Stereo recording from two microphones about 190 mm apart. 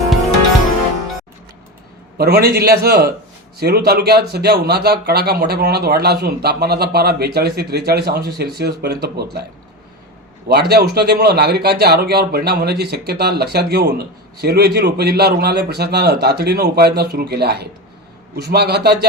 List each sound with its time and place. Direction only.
2.1 s a man's voice: 60° right (ahead or behind)
10.5 s a man's voice: 60° right (ahead or behind)